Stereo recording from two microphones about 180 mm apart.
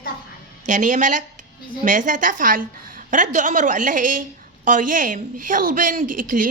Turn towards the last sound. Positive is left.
turn(degrees=-50)  # may be behind; listen again after turning